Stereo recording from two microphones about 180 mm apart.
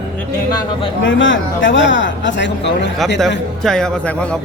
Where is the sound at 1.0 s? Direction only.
90° left.